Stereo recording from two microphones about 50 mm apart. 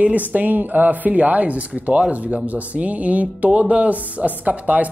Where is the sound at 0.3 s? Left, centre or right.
Right.